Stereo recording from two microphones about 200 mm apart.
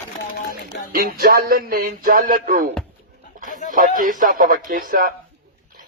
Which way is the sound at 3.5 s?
40° left (ahead or behind).